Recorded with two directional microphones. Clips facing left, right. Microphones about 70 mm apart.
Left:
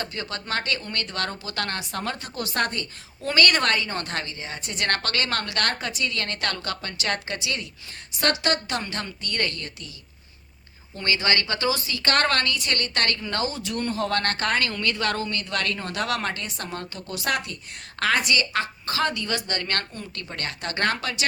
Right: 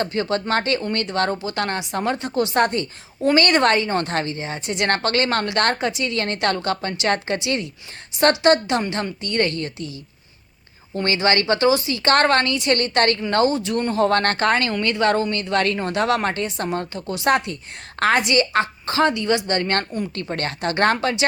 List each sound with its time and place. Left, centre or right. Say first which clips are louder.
0.0 s a woman's voice: right 10 dB; right
10.9 s speech: right 5 dB; right